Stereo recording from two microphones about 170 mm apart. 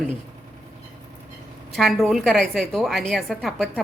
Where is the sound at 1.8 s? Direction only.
Centre (ahead or behind).